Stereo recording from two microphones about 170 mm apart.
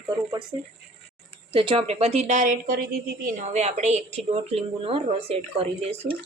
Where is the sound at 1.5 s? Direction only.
30° right (ahead or behind).